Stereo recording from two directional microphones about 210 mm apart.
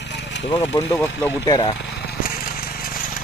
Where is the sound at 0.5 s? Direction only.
15° left (ahead or behind).